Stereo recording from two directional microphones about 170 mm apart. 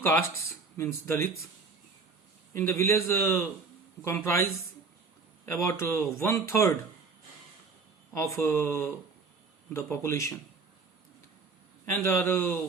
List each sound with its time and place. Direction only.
0.0 s speech: 15° left (ahead or behind)
2.6 s speech: 15° left (ahead or behind)
5.5 s speech: 15° left (ahead or behind)
8.1 s speech: 15° left (ahead or behind)
12.0 s speech: 15° left (ahead or behind)